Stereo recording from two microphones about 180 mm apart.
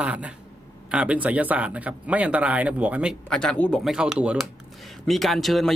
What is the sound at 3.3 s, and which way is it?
Speech, 5° left (ahead or behind).